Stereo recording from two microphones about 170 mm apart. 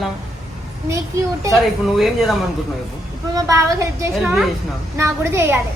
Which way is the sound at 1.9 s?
Centre (ahead or behind).